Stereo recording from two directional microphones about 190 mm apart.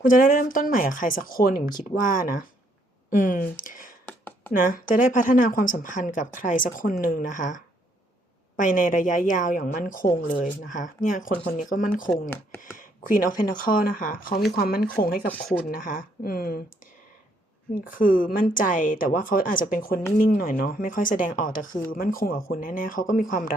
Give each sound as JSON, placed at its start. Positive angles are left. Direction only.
{"t": 0.0, "sound": "speech", "side_deg": 45}
{"t": 4.0, "sound": "a sound", "side_deg": 10}
{"t": 4.5, "sound": "speech", "side_deg": 45}
{"t": 15.3, "sound": "speech", "side_deg": 5}
{"t": 15.7, "sound": "speech", "side_deg": 45}
{"t": 17.8, "sound": "speech", "side_deg": 45}